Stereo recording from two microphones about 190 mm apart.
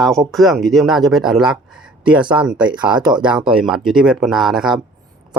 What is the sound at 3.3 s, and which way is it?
Speech, 5° right (ahead or behind).